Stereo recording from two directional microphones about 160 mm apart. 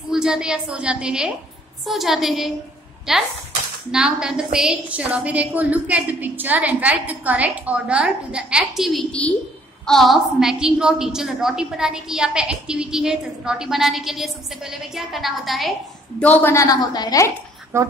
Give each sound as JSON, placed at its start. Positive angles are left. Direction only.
{"t": 0.1, "sound": "a woman's voice", "side_deg": -5}
{"t": 16.2, "sound": "a woman's voice", "side_deg": 10}
{"t": 17.7, "sound": "a woman's voice", "side_deg": -15}